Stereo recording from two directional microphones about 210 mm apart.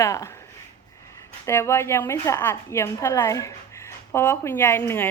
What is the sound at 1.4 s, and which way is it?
A woman's voice, 10° left (ahead or behind).